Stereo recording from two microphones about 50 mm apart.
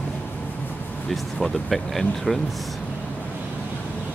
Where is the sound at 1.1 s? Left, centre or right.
Centre.